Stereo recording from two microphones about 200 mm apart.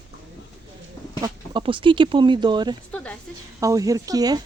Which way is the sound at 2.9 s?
5° left (ahead or behind).